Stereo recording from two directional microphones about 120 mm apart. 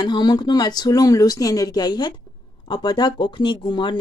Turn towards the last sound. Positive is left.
turn(degrees=40)  # may be behind; listen again after turning